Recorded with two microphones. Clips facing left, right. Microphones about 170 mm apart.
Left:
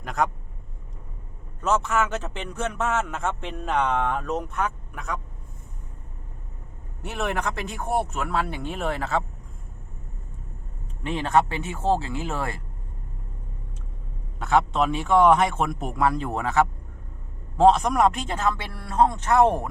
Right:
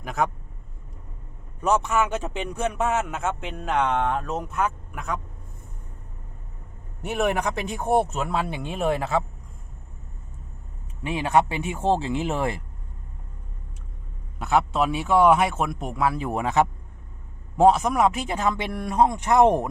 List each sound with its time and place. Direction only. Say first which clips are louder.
0.0 s speech: even; 5° right (ahead or behind)
1.6 s speech: right 1 dB; 15° right (ahead or behind)
7.0 s speech: right 4 dB; 15° right (ahead or behind)
11.0 s speech: right 1 dB; 10° right (ahead or behind)
14.3 s speech: even; 10° right (ahead or behind)